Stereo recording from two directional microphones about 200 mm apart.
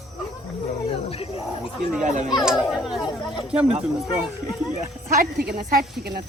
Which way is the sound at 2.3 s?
5° right (ahead or behind).